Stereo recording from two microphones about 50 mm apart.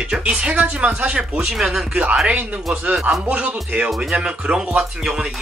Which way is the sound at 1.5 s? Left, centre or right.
Centre.